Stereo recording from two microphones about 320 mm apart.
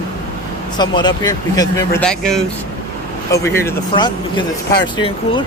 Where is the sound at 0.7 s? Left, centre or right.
Centre.